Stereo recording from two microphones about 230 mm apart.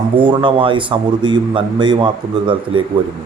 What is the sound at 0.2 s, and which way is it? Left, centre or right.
A man's voice, right.